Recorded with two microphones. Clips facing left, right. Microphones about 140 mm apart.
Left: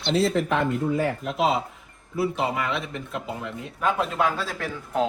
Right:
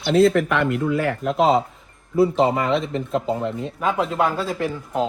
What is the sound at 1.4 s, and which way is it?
Speech, 40° right (ahead or behind).